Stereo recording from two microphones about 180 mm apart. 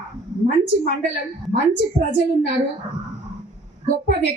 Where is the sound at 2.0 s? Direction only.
40° right (ahead or behind).